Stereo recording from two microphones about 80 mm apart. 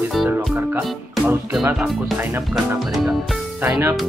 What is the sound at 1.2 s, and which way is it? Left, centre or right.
Speech, centre.